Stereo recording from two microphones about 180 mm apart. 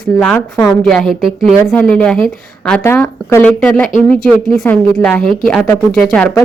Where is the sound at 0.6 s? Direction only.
5° left (ahead or behind).